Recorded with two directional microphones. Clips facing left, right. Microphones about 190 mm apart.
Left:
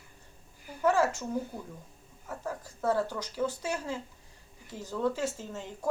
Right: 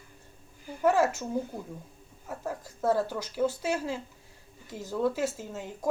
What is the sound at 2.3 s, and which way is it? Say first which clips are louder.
Speech: right 2 dB; 10° right (ahead or behind).